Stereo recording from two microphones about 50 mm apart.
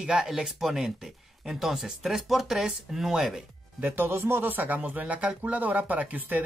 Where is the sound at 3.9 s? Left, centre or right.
Right.